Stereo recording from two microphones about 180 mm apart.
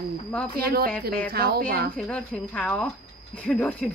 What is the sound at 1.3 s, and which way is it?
Speech, 60° right (ahead or behind).